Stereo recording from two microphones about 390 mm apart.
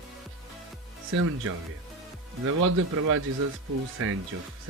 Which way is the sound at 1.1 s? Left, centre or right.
Right.